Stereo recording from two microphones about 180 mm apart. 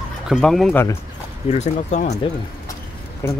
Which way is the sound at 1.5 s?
40° left (ahead or behind).